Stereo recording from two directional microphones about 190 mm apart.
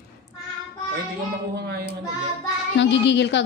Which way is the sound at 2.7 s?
70° left (ahead or behind).